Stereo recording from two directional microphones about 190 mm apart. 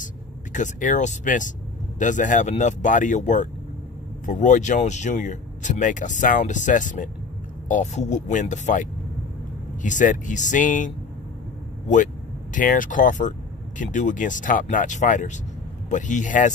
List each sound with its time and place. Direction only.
0.0 s speech: 40° left (ahead or behind)
12.5 s speech: 45° left (ahead or behind)